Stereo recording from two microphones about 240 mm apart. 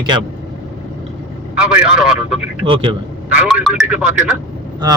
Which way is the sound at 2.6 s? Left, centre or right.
Right.